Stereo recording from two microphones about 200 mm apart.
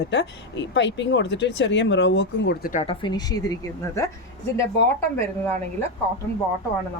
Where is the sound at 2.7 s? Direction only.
30° left (ahead or behind).